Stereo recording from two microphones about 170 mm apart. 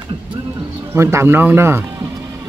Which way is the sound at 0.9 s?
15° right (ahead or behind).